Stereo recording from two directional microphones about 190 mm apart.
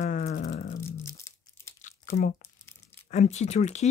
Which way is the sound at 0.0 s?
40° left (ahead or behind).